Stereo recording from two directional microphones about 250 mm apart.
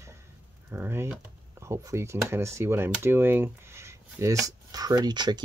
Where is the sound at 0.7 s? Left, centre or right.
Centre.